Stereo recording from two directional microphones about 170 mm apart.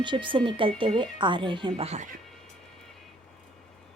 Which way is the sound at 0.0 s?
30° right (ahead or behind).